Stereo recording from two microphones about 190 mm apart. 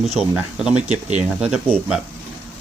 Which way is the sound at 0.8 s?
35° right (ahead or behind).